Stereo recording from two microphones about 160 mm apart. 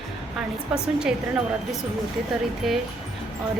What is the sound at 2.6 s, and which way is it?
Speech, centre (ahead or behind).